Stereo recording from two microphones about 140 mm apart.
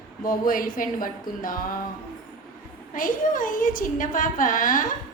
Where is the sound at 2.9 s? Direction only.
75° left (ahead or behind).